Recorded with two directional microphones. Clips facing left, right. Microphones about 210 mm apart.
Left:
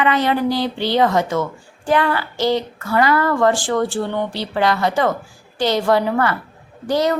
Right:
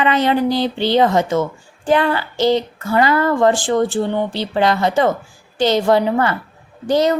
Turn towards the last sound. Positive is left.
turn(degrees=-25)  # may be behind; listen again after turning